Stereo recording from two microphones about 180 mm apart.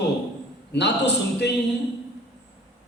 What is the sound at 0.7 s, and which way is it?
Speech, 70° left (ahead or behind).